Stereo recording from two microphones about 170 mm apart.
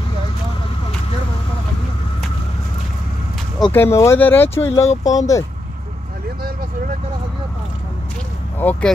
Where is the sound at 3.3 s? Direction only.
10° left (ahead or behind).